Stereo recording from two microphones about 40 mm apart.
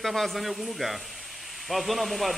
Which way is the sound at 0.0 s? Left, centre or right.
Centre.